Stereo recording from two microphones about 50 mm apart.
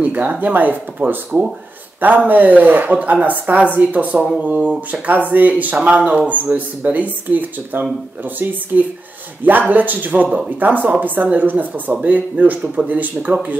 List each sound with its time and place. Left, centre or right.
0.0 s speech: right
5.3 s speech: right